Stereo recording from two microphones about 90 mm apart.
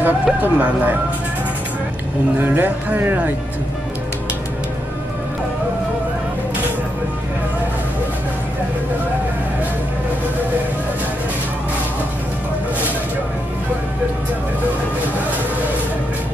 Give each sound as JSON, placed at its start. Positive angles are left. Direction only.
{"t": 0.0, "sound": "speech", "side_deg": -20}
{"t": 2.3, "sound": "speech", "side_deg": -20}